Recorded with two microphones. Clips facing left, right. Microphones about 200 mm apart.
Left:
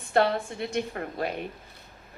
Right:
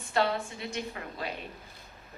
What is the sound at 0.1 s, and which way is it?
A woman's voice, 55° left (ahead or behind).